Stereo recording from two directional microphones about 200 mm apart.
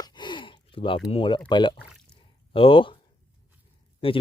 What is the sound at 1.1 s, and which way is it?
A man's voice, 25° left (ahead or behind).